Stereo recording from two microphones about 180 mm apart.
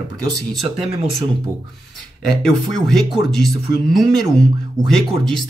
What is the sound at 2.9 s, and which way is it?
Speech, centre (ahead or behind).